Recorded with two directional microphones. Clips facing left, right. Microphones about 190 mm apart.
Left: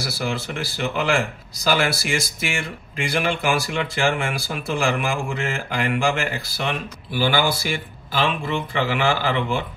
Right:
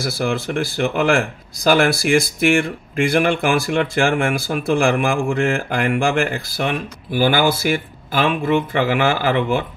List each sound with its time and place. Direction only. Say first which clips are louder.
0.2 s speech: right 6 dB; 50° right (ahead or behind)